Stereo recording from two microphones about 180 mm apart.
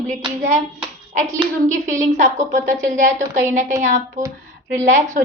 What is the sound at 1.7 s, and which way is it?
A woman's voice, 45° right (ahead or behind).